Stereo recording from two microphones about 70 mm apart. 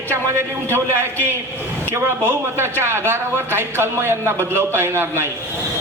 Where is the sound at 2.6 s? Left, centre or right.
Right.